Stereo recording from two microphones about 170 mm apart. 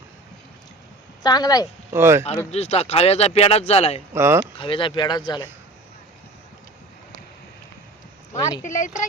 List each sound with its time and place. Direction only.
1.2 s speech: 25° left (ahead or behind)
1.9 s speech: 15° right (ahead or behind)
2.5 s speech: 40° left (ahead or behind)
4.1 s speech: 15° right (ahead or behind)
4.5 s speech: 30° left (ahead or behind)
8.3 s speech: 20° left (ahead or behind)
8.6 s speech: 45° left (ahead or behind)